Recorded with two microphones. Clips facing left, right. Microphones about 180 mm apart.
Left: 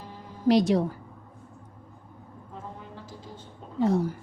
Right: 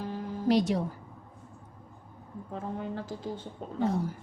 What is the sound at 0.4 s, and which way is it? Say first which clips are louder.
Speech: left 4 dB; 90° left.